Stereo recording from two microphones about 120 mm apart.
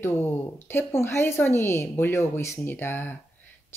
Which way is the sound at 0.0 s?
20° left (ahead or behind).